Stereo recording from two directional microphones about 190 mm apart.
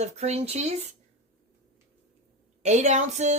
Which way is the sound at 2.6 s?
35° right (ahead or behind).